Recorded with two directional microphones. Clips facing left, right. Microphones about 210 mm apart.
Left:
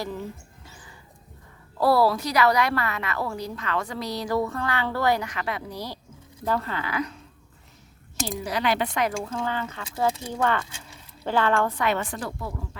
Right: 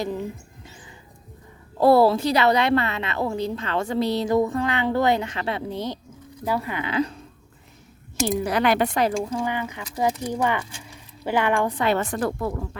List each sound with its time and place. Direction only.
0.0 s a sound: 20° right (ahead or behind)
1.8 s a woman's voice: 25° right (ahead or behind)
6.4 s speech: 10° right (ahead or behind); by 7.2 s 30° right (ahead or behind)
8.4 s speech: 55° right (ahead or behind)
9.2 s speech: 15° right (ahead or behind)
12.0 s speech: 50° right (ahead or behind)